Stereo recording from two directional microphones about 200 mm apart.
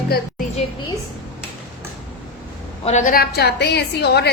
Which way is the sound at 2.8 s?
35° left (ahead or behind).